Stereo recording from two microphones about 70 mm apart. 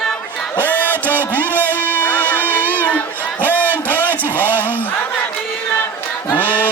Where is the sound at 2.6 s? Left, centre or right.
Left.